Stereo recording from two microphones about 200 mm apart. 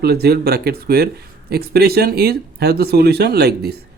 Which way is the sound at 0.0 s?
55° right (ahead or behind).